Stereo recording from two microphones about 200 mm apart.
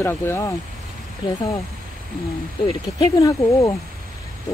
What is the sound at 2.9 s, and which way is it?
Speech, 20° left (ahead or behind).